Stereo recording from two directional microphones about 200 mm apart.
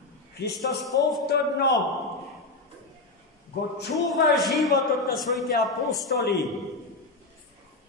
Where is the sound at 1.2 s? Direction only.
55° left (ahead or behind).